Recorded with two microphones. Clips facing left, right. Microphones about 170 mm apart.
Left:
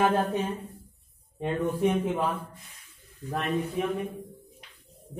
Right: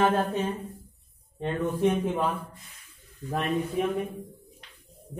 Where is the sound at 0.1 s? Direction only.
15° left (ahead or behind).